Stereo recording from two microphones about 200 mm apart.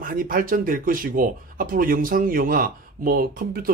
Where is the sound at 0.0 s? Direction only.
45° right (ahead or behind).